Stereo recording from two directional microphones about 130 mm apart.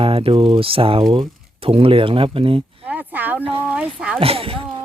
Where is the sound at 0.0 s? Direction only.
45° right (ahead or behind).